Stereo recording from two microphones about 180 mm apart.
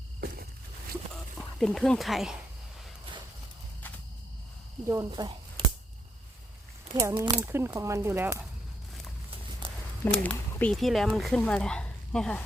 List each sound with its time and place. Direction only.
0.2 s a sound: 60° right (ahead or behind)
1.4 s speech: 5° left (ahead or behind)
4.9 s speech: 20° right (ahead or behind)
7.2 s speech: 15° right (ahead or behind)
9.6 s a sound: 30° right (ahead or behind)
10.0 s speech: 10° left (ahead or behind)